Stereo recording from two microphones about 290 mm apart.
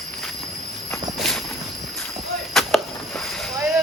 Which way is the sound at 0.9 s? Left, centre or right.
Centre.